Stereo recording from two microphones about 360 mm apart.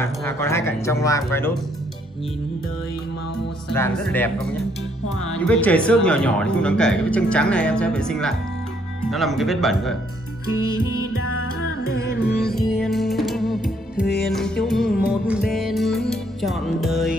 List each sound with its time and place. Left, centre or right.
0.0 s speech: centre
3.7 s speech: centre
5.4 s speech: centre
10.5 s music: left
12.5 s music: centre
14.1 s speech: centre
15.2 s music: centre